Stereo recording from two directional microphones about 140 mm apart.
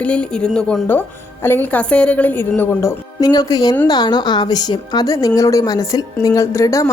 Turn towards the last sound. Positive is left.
turn(degrees=20)  # may be behind; listen again after turning